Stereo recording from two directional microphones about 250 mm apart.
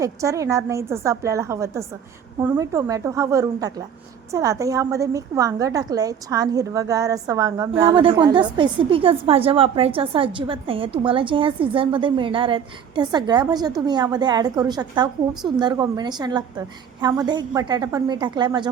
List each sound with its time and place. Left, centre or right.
0.0 s a woman's voice: centre